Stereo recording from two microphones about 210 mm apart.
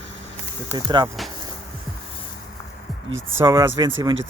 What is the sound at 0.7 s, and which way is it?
Speech, 20° right (ahead or behind).